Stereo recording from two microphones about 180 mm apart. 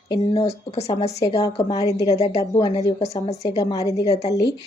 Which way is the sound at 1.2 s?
20° left (ahead or behind).